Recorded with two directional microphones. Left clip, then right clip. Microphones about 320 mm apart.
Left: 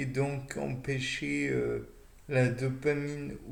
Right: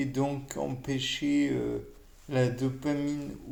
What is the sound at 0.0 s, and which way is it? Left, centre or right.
Speech, right.